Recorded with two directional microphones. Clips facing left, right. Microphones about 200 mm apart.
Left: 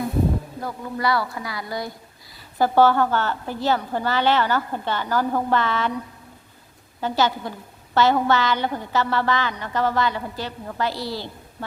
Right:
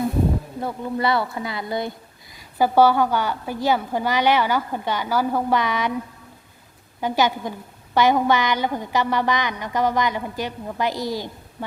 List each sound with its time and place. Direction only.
0.6 s speech: 25° right (ahead or behind)
2.3 s a woman's voice: 10° right (ahead or behind)
7.0 s a woman's voice: 15° right (ahead or behind)